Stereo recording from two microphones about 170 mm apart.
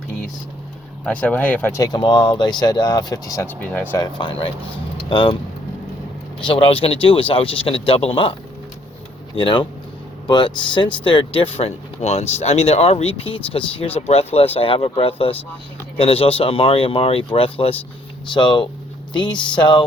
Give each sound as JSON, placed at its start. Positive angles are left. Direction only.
{"t": 1.0, "sound": "speech", "side_deg": 10}
{"t": 3.6, "sound": "speech", "side_deg": 10}
{"t": 4.0, "sound": "speech", "side_deg": 30}
{"t": 6.4, "sound": "speech", "side_deg": 30}